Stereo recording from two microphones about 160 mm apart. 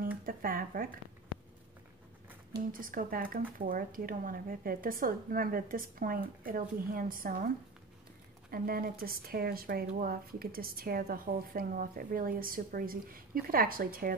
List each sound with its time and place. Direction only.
0.2 s speech: 60° right (ahead or behind)
2.5 s a woman's voice: 60° right (ahead or behind)